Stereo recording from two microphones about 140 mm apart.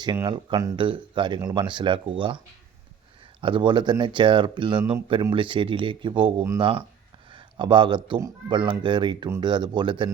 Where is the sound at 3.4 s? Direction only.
35° right (ahead or behind).